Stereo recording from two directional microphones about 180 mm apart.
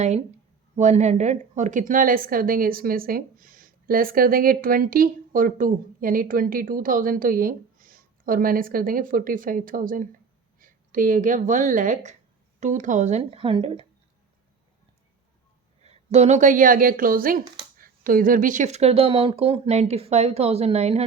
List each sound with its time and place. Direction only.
0.8 s a woman's voice: 40° right (ahead or behind)
15.8 s a woman's voice: 35° right (ahead or behind)